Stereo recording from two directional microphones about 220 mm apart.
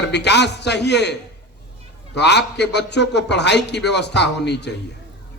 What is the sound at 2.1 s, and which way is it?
A man's voice, 50° left (ahead or behind).